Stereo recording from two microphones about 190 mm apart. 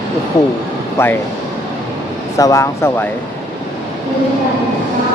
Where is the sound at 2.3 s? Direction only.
15° left (ahead or behind).